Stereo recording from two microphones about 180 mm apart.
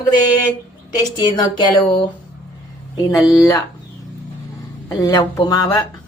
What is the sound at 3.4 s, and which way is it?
Speech, 20° left (ahead or behind).